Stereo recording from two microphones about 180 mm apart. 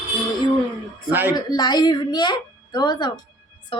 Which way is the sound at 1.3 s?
20° left (ahead or behind).